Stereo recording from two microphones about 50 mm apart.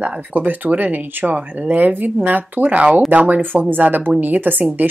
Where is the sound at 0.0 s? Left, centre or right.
Right.